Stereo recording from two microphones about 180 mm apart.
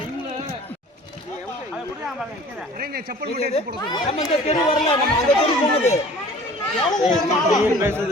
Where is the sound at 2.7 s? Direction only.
55° right (ahead or behind).